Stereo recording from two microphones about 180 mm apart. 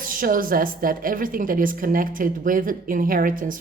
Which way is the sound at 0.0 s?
50° right (ahead or behind).